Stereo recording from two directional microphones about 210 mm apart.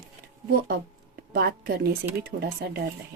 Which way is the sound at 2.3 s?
55° right (ahead or behind).